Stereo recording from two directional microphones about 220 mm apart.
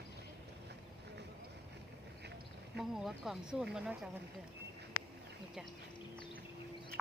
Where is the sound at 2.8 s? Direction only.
Centre (ahead or behind).